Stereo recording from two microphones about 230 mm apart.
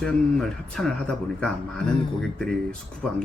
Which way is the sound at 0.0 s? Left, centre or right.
Centre.